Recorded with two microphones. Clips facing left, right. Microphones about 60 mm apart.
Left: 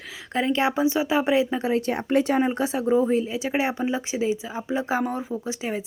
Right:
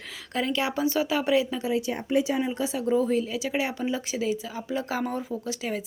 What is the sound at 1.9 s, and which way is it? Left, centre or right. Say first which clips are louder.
Speech: left 4 dB; left.